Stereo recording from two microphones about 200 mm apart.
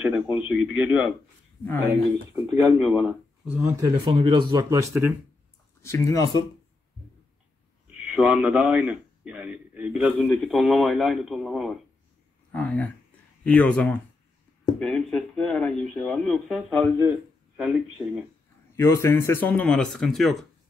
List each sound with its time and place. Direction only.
0.5 s speech: 5° right (ahead or behind)
1.6 s speech: 10° left (ahead or behind)
2.3 s speech: 10° right (ahead or behind)
3.8 s speech: 20° right (ahead or behind)
5.8 s speech: 15° left (ahead or behind)
7.9 s a man's voice: 5° right (ahead or behind)
18.8 s speech: 15° left (ahead or behind)